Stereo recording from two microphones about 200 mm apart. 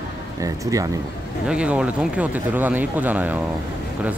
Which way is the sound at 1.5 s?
5° right (ahead or behind).